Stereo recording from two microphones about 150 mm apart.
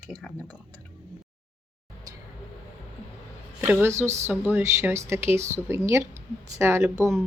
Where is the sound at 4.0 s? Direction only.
15° right (ahead or behind).